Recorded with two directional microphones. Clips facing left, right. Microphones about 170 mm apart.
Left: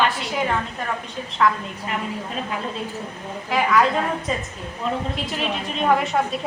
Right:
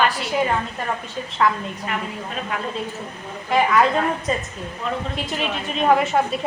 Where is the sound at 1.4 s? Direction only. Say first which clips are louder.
Left 1 dB; centre (ahead or behind).